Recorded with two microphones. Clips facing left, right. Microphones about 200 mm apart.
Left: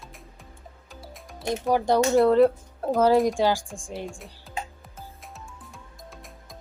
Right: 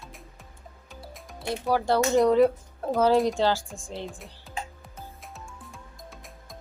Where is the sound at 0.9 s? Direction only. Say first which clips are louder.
Even; centre (ahead or behind).